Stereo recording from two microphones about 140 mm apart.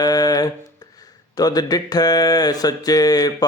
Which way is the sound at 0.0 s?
25° left (ahead or behind).